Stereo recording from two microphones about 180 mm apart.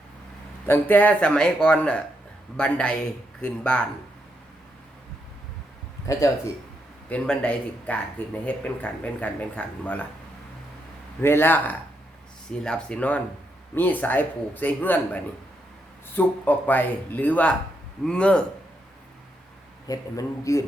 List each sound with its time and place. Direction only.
0.7 s speech: 10° left (ahead or behind)
7.1 s speech: 5° left (ahead or behind)
11.2 s speech: 10° left (ahead or behind)
19.9 s speech: 20° left (ahead or behind)